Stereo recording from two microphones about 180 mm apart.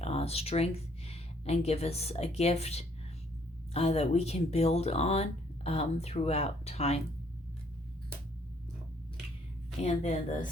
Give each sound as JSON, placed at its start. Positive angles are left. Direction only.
{"t": 0.0, "sound": "speech", "side_deg": 35}
{"t": 9.8, "sound": "speech", "side_deg": 40}